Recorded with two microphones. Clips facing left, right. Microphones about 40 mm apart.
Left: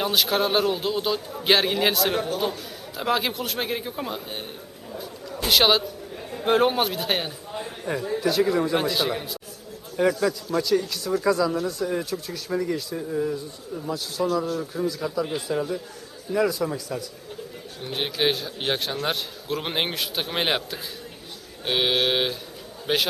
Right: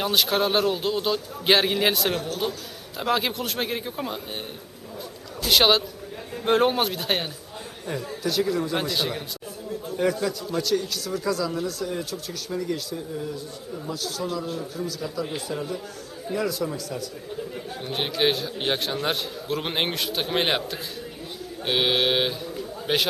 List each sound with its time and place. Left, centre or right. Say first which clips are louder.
0.0 s a man's voice: even; centre
2.1 s speech: left 3 dB; centre
3.0 s a man's voice: even; centre
5.5 s a man's voice: even; centre
7.5 s a man's voice: left 6 dB; centre
8.7 s a man's voice: left 3 dB; centre
10.2 s speech: left 2 dB; centre
11.0 s speech: left 4 dB; left
12.5 s speech: left 2 dB; centre
14.2 s speech: left 8 dB; left
17.8 s a man's voice: even; centre